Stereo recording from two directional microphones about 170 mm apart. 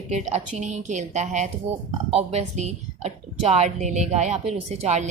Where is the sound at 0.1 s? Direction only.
40° right (ahead or behind).